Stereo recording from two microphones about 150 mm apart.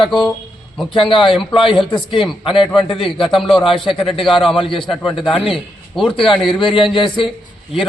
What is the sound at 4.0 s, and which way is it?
A man's voice, centre (ahead or behind).